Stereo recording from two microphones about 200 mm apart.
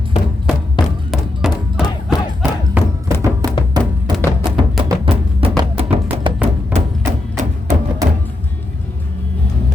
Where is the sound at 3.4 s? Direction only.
20° right (ahead or behind).